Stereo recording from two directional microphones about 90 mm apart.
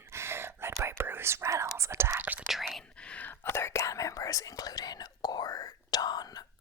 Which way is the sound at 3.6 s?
30° left (ahead or behind).